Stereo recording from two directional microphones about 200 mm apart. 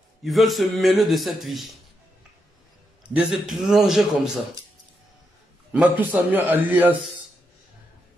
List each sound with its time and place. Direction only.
0.2 s a man's voice: centre (ahead or behind)
3.1 s a man's voice: 5° right (ahead or behind)
5.7 s a man's voice: 5° right (ahead or behind)